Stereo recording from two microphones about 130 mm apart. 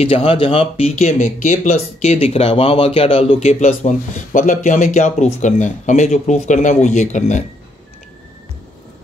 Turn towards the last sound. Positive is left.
turn(degrees=70)  # may be behind; listen again after turning